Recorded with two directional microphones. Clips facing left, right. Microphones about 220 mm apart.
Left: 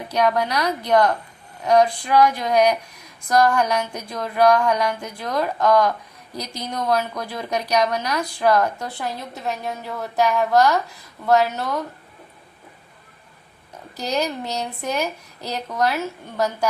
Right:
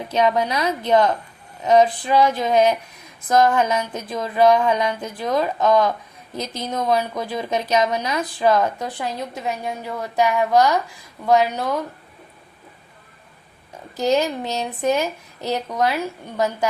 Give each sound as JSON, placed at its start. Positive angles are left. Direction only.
{"t": 0.1, "sound": "a woman's voice", "side_deg": -20}
{"t": 13.9, "sound": "a woman's voice", "side_deg": -20}